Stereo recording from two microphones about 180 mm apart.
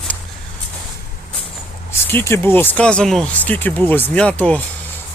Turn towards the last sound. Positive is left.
turn(degrees=10)  # may be behind; listen again after turning